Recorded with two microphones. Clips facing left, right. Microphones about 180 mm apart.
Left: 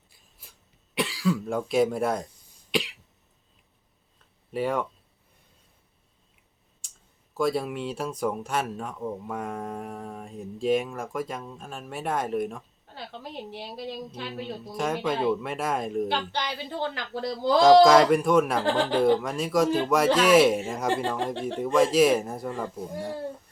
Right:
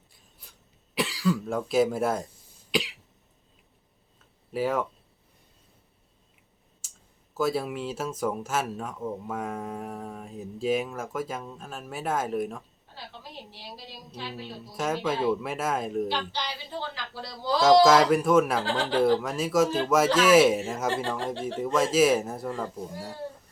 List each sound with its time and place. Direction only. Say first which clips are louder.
0.1 s a sound: left 1 dB; centre (ahead or behind)
0.9 s speech: even; centre (ahead or behind)
2.7 s cough: left 1 dB; centre (ahead or behind)
4.5 s speech: even; centre (ahead or behind)
6.8 s clicking: even; 5° right (ahead or behind)
7.3 s speech: left 1 dB; 5° right (ahead or behind)
12.9 s a woman's voice: left 5 dB; 55° left (ahead or behind)
14.8 s speech: even; centre (ahead or behind)
16.0 s a woman's voice: left 2 dB; 55° left (ahead or behind)
17.6 s speech: left 2 dB; centre (ahead or behind)